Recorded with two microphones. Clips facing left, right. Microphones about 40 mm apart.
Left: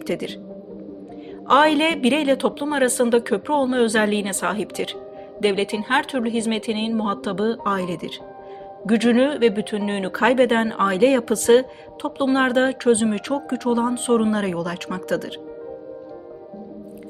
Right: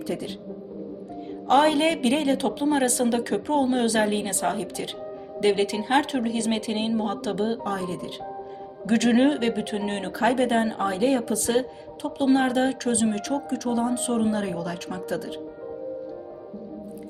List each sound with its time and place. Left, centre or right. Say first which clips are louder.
0.1 s speech: left 5 dB; left
1.5 s speech: left 3 dB; left
2.4 s speech: left 3 dB; left
3.9 s speech: left 3 dB; left
5.4 s speech: left 1 dB; left
7.8 s speech: left 4 dB; left
8.9 s speech: left 3 dB; centre
10.1 s speech: left 5 dB; left
10.8 s speech: left 9 dB; left
11.2 s speech: left 8 dB; left
12.3 s speech: left 3 dB; left
12.8 s speech: left 6 dB; left
14.3 s speech: left 4 dB; left